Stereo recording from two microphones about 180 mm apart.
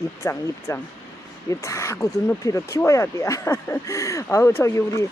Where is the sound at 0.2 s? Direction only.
15° left (ahead or behind).